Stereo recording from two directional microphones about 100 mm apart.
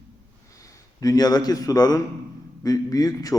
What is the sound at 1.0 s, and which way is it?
A man's voice, 40° left (ahead or behind).